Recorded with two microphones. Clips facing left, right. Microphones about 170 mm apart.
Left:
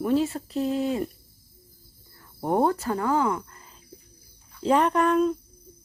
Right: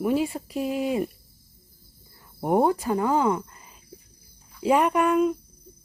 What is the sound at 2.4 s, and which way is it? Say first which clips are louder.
Speech: right 2 dB; 15° right (ahead or behind).